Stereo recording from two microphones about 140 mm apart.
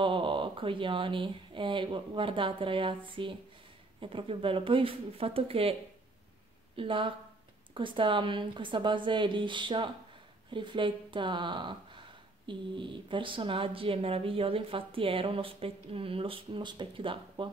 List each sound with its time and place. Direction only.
0.0 s speech: 35° right (ahead or behind)
6.8 s speech: 40° right (ahead or behind)